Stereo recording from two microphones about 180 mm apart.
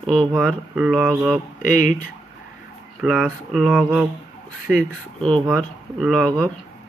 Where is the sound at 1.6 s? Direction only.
45° left (ahead or behind).